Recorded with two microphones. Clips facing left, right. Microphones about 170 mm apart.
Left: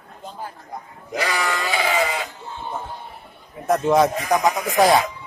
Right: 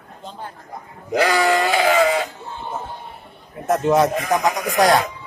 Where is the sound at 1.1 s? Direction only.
60° right (ahead or behind).